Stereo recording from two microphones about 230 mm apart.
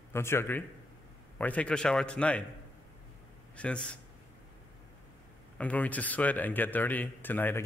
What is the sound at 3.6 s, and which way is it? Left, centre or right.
Speech, centre.